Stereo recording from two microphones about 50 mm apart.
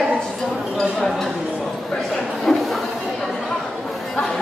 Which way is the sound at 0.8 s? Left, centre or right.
Centre.